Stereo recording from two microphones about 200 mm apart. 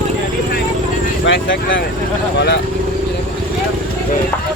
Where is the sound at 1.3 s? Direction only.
70° left (ahead or behind).